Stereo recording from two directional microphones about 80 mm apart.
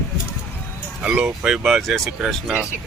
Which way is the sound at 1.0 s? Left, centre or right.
Centre.